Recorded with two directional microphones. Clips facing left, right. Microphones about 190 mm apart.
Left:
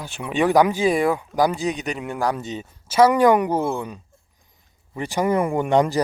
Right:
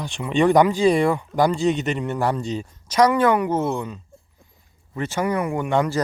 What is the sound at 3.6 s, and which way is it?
Speech, centre (ahead or behind).